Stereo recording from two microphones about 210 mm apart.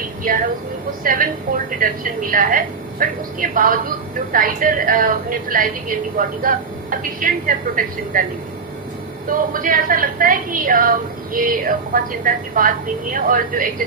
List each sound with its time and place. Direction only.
1.0 s a woman's voice: 40° right (ahead or behind)
9.3 s a woman's voice: 40° right (ahead or behind)